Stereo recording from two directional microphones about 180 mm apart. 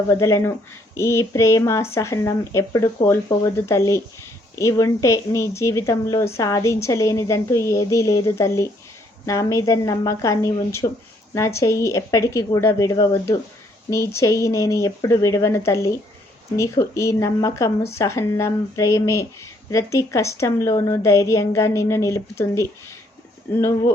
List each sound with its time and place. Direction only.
0.1 s speech: 15° left (ahead or behind)